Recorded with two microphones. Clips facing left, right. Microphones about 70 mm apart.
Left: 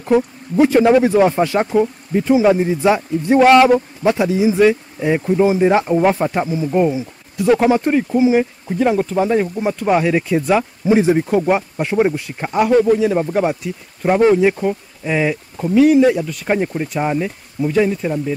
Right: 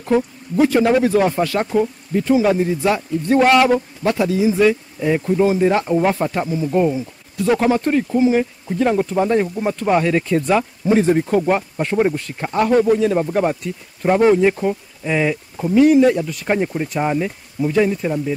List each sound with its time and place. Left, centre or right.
0.0 s speech: centre